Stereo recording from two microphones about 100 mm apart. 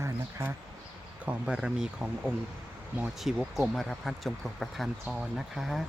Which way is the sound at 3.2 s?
Centre (ahead or behind).